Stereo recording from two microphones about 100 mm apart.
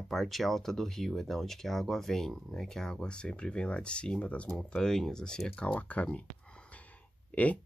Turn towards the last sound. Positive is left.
turn(degrees=10)  # may be behind; listen again after turning